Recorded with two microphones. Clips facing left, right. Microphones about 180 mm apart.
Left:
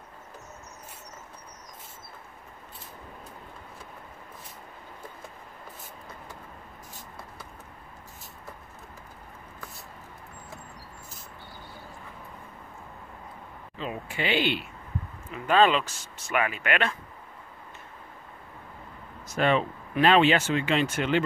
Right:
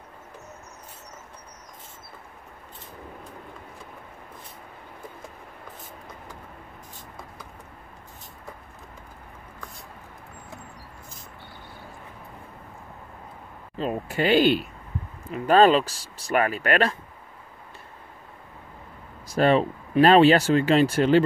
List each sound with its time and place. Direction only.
13.7 s speech: 40° right (ahead or behind)
19.2 s speech: 35° right (ahead or behind)